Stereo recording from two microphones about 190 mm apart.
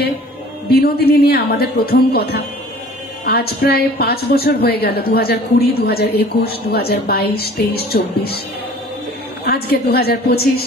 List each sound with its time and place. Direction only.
0.7 s a woman's voice: 55° left (ahead or behind)
9.4 s a woman's voice: 55° left (ahead or behind)